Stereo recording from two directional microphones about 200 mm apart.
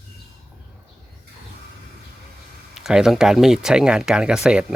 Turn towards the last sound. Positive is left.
turn(degrees=-5)  # may be behind; listen again after turning